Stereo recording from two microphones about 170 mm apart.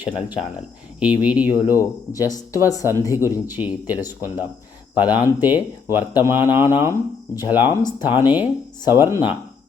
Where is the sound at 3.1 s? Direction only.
15° right (ahead or behind).